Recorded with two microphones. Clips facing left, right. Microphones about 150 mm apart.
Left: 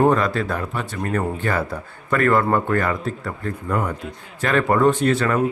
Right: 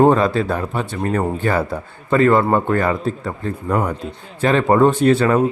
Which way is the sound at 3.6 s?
40° right (ahead or behind).